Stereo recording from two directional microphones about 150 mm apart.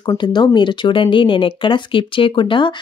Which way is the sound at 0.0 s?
30° left (ahead or behind).